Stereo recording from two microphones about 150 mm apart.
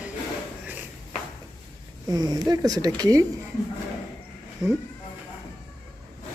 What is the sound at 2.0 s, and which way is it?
Speech, 25° right (ahead or behind).